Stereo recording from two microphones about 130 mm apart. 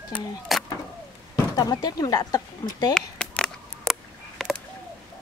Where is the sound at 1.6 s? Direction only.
30° left (ahead or behind).